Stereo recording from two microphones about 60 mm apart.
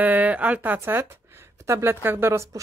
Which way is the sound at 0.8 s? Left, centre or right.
Right.